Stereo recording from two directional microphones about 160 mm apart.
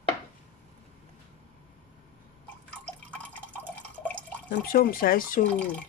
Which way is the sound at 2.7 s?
5° left (ahead or behind).